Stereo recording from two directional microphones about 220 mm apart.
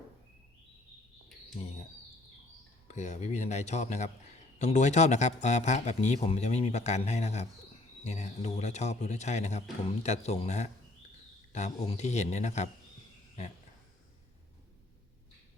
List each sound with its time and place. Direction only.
2.8 s speech: 30° left (ahead or behind)